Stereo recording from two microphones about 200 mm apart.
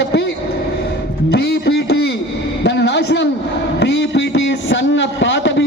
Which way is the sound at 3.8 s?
60° left (ahead or behind).